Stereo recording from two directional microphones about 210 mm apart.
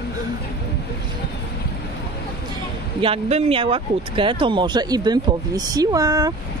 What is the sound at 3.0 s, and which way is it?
Speech, 25° right (ahead or behind).